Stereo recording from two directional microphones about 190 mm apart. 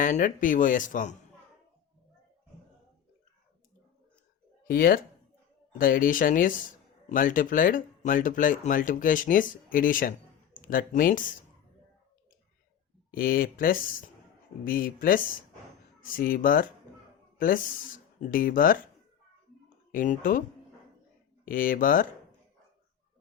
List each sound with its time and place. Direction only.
0.0 s speech: 45° left (ahead or behind)
4.6 s speech: 50° left (ahead or behind)
13.1 s speech: 50° left (ahead or behind)
19.9 s speech: 45° left (ahead or behind)
21.4 s speech: 45° left (ahead or behind)